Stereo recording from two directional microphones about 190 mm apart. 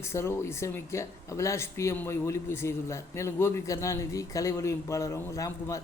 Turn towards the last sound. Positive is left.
turn(degrees=15)  # may be behind; listen again after turning